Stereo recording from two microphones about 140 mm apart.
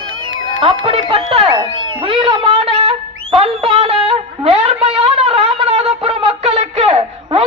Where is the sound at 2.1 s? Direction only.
40° right (ahead or behind).